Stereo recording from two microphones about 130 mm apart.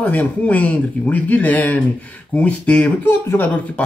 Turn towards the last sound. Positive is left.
turn(degrees=15)  # may be behind; listen again after turning